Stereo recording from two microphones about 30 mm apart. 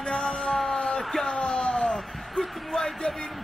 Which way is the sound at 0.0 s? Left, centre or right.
Left.